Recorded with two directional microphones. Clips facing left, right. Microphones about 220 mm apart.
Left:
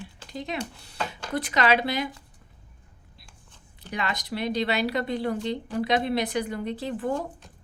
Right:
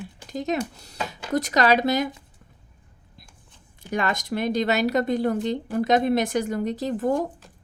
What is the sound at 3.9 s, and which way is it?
Speech, 45° right (ahead or behind).